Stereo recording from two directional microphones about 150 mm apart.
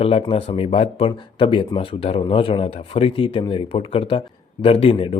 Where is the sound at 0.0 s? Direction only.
40° left (ahead or behind).